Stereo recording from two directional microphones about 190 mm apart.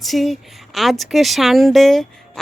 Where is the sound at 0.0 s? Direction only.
Centre (ahead or behind).